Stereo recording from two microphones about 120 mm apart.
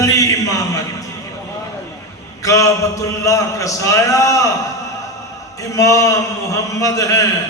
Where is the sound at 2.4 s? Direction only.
25° left (ahead or behind).